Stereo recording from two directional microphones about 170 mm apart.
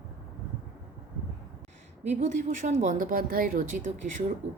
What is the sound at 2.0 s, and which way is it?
A woman's voice, 40° right (ahead or behind).